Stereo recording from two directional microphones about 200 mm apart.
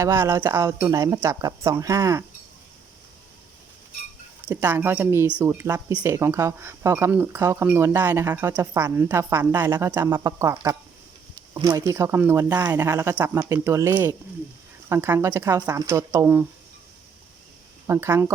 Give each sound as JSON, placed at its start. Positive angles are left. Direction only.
{"t": 0.0, "sound": "speech", "side_deg": -15}
{"t": 4.4, "sound": "speech", "side_deg": -10}
{"t": 17.8, "sound": "speech", "side_deg": -15}